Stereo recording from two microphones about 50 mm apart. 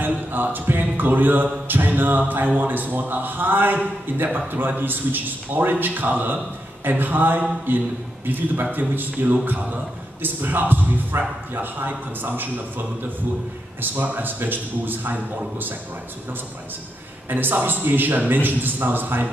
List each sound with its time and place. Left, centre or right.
0.0 s music: right
7.7 s a man's voice: right
8.3 s music: right
17.3 s music: right